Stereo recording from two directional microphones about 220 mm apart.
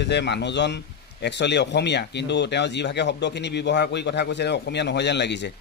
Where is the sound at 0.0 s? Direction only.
50° left (ahead or behind).